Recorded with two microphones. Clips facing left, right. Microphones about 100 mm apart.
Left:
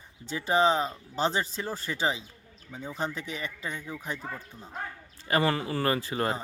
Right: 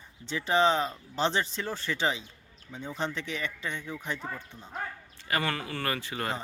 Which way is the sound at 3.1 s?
40° left (ahead or behind).